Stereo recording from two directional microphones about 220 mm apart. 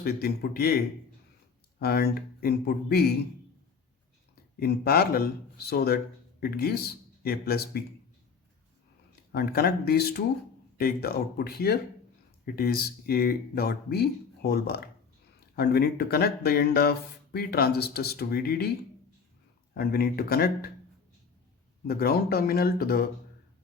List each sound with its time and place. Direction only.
0.0 s speech: 45° left (ahead or behind)
4.6 s speech: 45° left (ahead or behind)
9.3 s speech: 45° left (ahead or behind)
19.7 s speech: 45° left (ahead or behind)
21.8 s speech: 45° left (ahead or behind)